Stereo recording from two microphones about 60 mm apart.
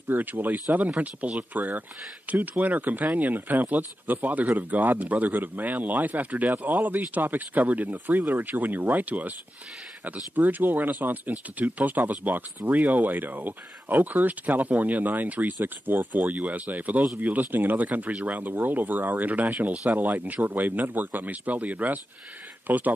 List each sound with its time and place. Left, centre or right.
0.1 s speech: right